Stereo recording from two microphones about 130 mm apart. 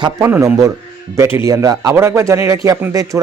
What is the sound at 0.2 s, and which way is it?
A man's voice, 20° right (ahead or behind).